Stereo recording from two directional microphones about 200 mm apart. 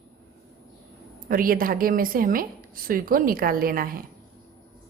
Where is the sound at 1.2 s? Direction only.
45° right (ahead or behind).